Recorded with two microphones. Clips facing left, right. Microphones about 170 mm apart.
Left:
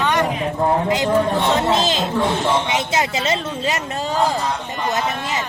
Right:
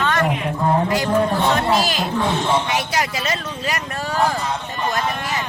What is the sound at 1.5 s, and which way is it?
Speech, 25° left (ahead or behind).